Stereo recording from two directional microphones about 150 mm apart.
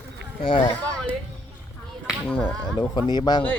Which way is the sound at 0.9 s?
5° left (ahead or behind).